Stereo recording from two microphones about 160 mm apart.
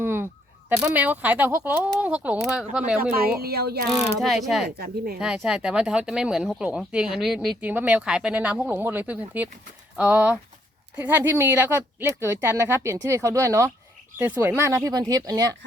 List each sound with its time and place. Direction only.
0.0 s a sound: 15° right (ahead or behind)
0.8 s speech: 10° right (ahead or behind)
3.0 s speech: 75° right (ahead or behind)
3.8 s speech: centre (ahead or behind)
4.8 s speech: 85° right
5.2 s speech: 5° right (ahead or behind); by 15.5 s 25° right (ahead or behind)